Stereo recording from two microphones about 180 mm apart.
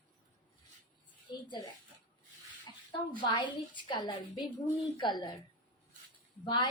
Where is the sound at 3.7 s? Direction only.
25° left (ahead or behind).